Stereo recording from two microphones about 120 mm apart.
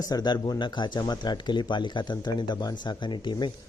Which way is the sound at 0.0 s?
35° left (ahead or behind).